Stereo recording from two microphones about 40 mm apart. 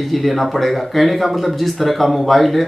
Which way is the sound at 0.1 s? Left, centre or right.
Centre.